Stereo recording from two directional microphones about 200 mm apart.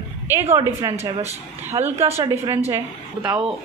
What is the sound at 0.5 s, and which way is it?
A woman's voice, 15° right (ahead or behind).